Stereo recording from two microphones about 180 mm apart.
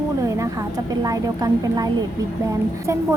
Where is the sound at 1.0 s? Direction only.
20° right (ahead or behind).